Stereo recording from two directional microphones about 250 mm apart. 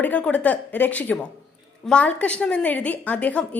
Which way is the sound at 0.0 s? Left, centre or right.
Centre.